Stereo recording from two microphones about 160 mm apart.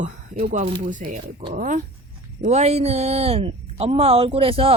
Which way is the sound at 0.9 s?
60° right (ahead or behind).